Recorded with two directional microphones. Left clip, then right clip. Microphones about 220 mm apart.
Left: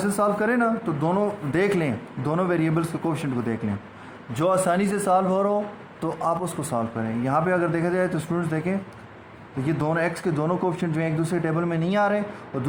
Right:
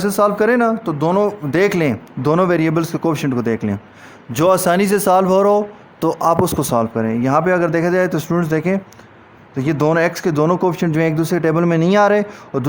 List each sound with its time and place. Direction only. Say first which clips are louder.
0.0 s speech: right 8 dB; 50° right (ahead or behind)